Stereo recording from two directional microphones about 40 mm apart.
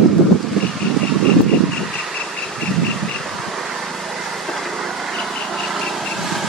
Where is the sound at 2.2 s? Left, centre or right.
Left.